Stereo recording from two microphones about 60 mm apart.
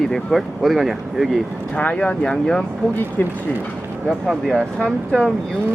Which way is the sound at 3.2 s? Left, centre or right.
Left.